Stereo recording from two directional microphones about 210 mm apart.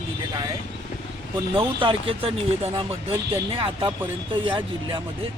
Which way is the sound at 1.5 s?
25° right (ahead or behind).